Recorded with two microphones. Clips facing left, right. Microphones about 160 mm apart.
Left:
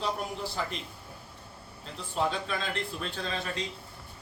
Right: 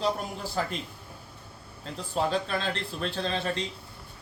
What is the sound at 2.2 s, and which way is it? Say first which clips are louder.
Speech: right 3 dB; 35° right (ahead or behind).